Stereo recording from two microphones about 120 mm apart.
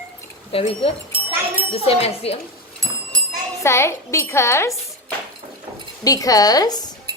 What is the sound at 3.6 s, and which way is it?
Speech, 20° left (ahead or behind).